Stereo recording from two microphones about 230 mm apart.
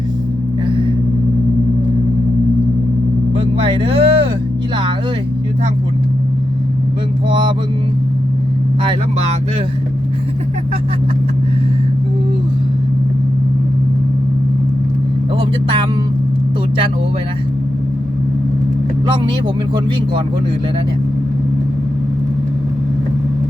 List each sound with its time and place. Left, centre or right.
3.3 s a sound: right
7.3 s speech: right
8.8 s speech: right
15.4 s speech: right